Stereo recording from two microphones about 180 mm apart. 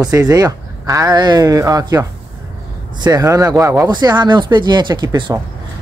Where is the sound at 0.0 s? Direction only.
20° right (ahead or behind).